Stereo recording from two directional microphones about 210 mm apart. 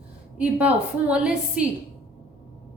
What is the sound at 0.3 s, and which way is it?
A woman's voice, 5° right (ahead or behind).